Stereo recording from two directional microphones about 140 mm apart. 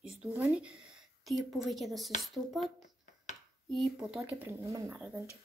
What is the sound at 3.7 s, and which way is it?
Child singing, 5° right (ahead or behind).